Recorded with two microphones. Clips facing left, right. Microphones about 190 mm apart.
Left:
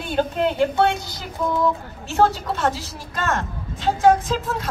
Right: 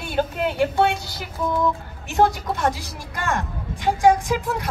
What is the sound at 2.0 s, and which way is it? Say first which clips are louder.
A woman's voice: even; 15° right (ahead or behind).